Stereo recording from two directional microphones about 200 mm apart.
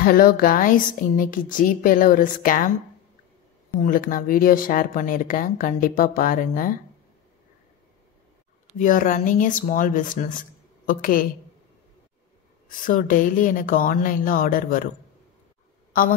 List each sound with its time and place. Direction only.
0.0 s speech: 45° left (ahead or behind)
3.8 s speech: 40° left (ahead or behind)
8.7 s speech: 40° left (ahead or behind)
12.6 s speech: 40° left (ahead or behind)